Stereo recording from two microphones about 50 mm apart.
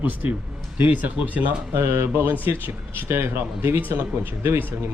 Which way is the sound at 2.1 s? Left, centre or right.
Right.